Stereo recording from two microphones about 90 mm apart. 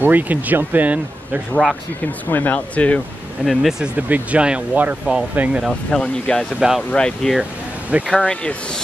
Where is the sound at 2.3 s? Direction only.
20° left (ahead or behind).